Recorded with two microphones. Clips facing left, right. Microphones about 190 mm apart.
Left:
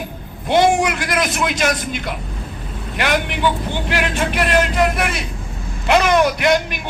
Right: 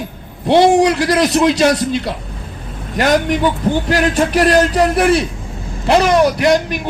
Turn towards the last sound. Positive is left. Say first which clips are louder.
# right 3 dB
turn(degrees=-35)  # may be behind; listen again after turning